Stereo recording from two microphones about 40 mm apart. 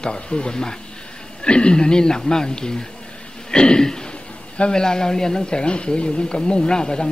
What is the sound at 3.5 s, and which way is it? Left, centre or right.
Throat clearing, left.